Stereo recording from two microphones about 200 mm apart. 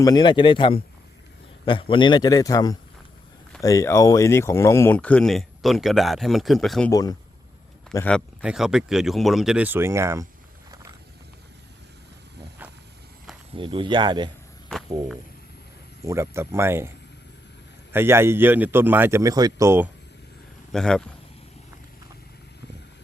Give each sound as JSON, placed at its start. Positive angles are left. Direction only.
{"t": 0.0, "sound": "a man's voice", "side_deg": 20}
{"t": 6.9, "sound": "a man's voice", "side_deg": 20}
{"t": 7.9, "sound": "speech", "side_deg": 5}
{"t": 8.4, "sound": "speech", "side_deg": -5}
{"t": 13.6, "sound": "speech", "side_deg": -25}
{"t": 16.0, "sound": "a man's voice", "side_deg": -15}
{"t": 17.9, "sound": "a man's voice", "side_deg": -10}
{"t": 20.7, "sound": "speech", "side_deg": 5}